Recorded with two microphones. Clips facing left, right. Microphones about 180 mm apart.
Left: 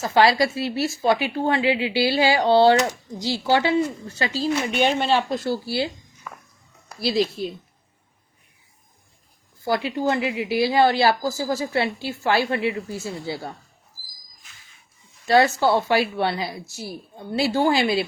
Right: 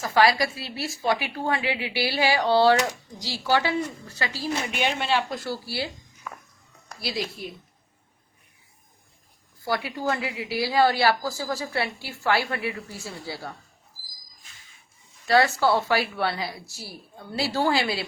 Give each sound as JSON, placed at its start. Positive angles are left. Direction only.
{"t": 0.0, "sound": "a woman's voice", "side_deg": 25}
{"t": 4.8, "sound": "speech", "side_deg": 40}
{"t": 5.3, "sound": "a woman's voice", "side_deg": 25}
{"t": 6.3, "sound": "walk", "side_deg": 0}
{"t": 7.0, "sound": "a woman's voice", "side_deg": 25}
{"t": 9.6, "sound": "a woman's voice", "side_deg": 20}
{"t": 15.3, "sound": "a woman's voice", "side_deg": 20}